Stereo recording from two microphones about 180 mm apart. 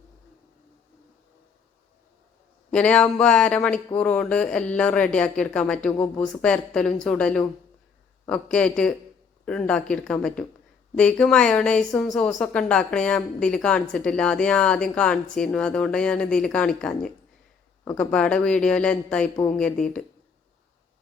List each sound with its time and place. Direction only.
2.6 s a woman's voice: 5° left (ahead or behind)
18.1 s a woman's voice: 5° left (ahead or behind)